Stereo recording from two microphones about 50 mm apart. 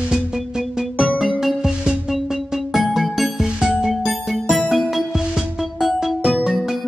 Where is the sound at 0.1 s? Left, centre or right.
Centre.